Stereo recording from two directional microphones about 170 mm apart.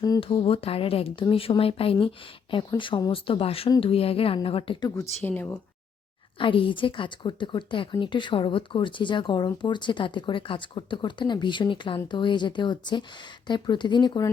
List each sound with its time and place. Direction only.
0.2 s a woman's voice: 35° left (ahead or behind)
5.2 s speech: 10° left (ahead or behind)
6.4 s a woman's voice: 30° left (ahead or behind)